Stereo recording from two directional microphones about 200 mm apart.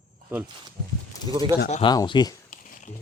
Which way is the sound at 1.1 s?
20° left (ahead or behind).